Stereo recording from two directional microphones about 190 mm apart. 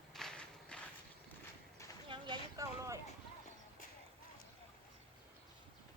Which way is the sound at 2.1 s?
20° right (ahead or behind).